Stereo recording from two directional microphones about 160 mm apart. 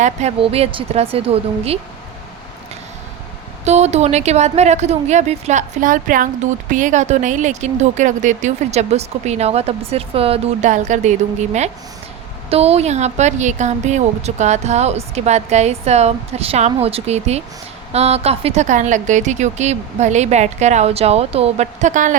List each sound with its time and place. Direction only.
0.0 s a woman's voice: 45° right (ahead or behind)
3.6 s speech: 45° right (ahead or behind)